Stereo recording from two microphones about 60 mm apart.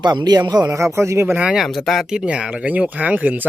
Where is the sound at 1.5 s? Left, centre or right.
Centre.